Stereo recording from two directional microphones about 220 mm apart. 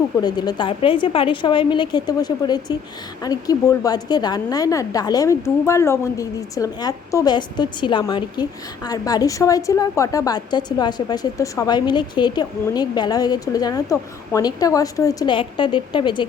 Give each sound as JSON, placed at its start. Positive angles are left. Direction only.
{"t": 0.2, "sound": "a woman's voice", "side_deg": 20}